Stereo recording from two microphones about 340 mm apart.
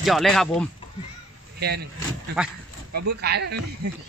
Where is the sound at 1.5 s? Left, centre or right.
Right.